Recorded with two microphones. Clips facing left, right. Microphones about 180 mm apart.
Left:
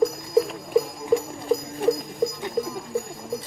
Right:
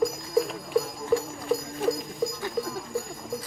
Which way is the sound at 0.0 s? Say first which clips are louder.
Left 4 dB; centre (ahead or behind).